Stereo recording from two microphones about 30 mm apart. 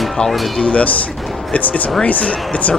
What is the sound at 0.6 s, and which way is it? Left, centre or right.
Speech, left.